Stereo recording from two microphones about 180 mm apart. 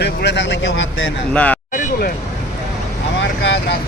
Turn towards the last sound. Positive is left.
turn(degrees=75)  # may be behind; listen again after turning